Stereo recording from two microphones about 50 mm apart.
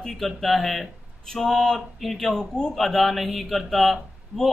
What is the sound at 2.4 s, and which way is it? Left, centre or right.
Speech, centre.